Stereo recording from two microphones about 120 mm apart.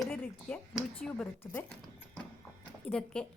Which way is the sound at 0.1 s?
15° left (ahead or behind).